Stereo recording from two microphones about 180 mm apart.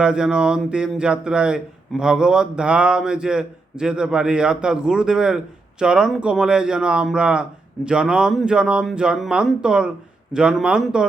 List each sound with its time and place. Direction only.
0.0 s speech: 5° right (ahead or behind)